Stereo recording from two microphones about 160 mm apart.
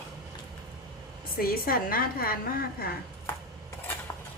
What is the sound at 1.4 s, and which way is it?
A woman's voice, 65° left (ahead or behind).